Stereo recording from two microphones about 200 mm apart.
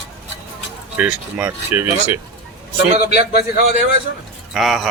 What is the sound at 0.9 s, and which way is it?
Speech, 5° right (ahead or behind).